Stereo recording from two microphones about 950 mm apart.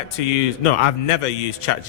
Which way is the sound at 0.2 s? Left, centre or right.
Left.